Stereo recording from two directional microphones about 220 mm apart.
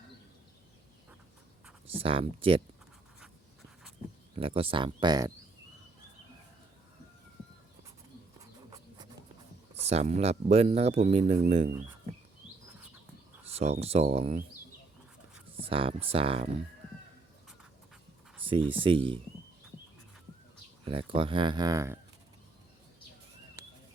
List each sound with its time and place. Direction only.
1.9 s speech: 25° right (ahead or behind)
4.4 s speech: 25° right (ahead or behind)
9.7 s speech: 30° right (ahead or behind)
13.4 s speech: 30° right (ahead or behind)
15.6 s speech: 25° right (ahead or behind)
18.7 s speech: 25° right (ahead or behind)
20.8 s speech: 25° right (ahead or behind)